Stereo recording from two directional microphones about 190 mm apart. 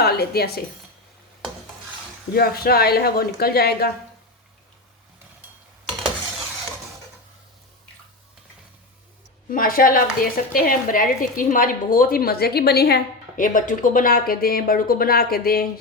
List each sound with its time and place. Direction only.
0.0 s speech: 55° left (ahead or behind)
2.3 s speech: 55° left (ahead or behind)
9.5 s a woman's voice: 45° left (ahead or behind)